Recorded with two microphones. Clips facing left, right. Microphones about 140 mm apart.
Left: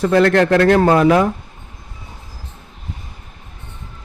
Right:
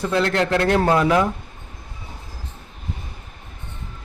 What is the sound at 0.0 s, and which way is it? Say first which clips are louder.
Speech: left 7 dB; 65° left (ahead or behind).